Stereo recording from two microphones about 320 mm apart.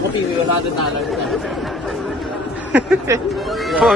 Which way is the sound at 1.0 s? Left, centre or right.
Centre.